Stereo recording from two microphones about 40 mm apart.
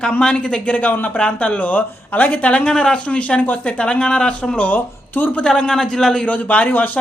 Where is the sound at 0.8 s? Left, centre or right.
Left.